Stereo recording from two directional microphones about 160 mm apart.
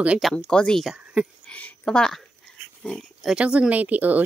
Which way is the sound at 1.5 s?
10° left (ahead or behind).